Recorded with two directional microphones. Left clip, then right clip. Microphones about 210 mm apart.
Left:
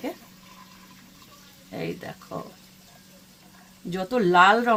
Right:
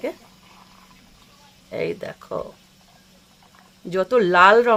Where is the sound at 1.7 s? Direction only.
50° right (ahead or behind).